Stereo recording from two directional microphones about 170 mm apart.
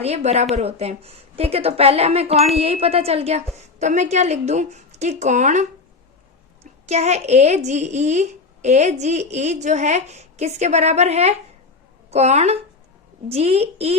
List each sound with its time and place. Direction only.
0.0 s a woman's voice: 40° right (ahead or behind)